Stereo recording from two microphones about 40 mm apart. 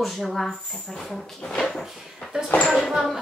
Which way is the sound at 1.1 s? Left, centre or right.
Centre.